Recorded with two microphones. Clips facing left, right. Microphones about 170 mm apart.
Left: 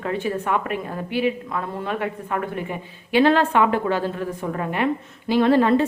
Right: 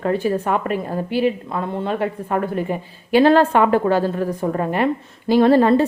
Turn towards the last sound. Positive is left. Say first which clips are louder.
# right 4 dB
turn(degrees=-35)  # may be behind; listen again after turning